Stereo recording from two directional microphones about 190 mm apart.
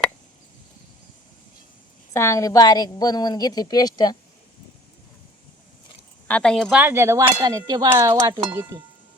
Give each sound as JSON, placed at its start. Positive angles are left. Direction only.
{"t": 2.1, "sound": "a woman's voice", "side_deg": 15}
{"t": 6.2, "sound": "cutlery", "side_deg": 5}
{"t": 7.4, "sound": "a sound", "side_deg": -20}
{"t": 8.4, "sound": "speech", "side_deg": -15}